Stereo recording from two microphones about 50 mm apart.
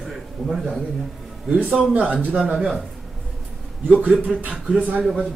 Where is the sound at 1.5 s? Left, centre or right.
Centre.